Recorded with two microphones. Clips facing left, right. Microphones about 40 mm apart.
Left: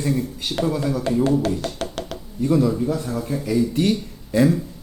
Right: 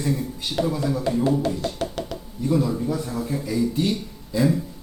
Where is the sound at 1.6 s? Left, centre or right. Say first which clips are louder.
Even; left.